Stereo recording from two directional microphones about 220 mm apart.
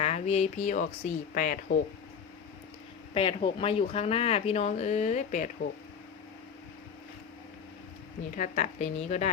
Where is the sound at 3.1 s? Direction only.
25° left (ahead or behind).